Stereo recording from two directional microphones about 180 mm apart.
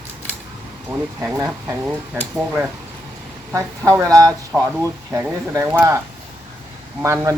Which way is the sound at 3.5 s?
15° right (ahead or behind).